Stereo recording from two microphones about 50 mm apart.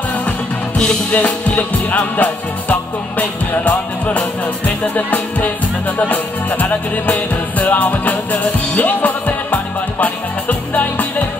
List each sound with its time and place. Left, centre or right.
1.1 s music: left